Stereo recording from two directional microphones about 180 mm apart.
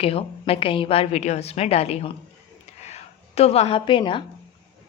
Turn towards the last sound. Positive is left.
turn(degrees=30)  # may be behind; listen again after turning